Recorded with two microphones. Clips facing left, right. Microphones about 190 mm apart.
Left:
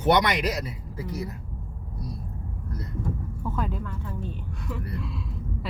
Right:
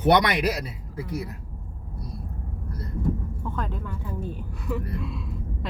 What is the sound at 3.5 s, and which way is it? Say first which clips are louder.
Speech: left 2 dB; 5° left (ahead or behind).